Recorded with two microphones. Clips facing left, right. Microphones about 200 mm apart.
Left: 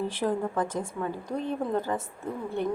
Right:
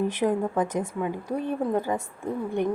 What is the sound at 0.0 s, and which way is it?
A woman's voice, 15° right (ahead or behind).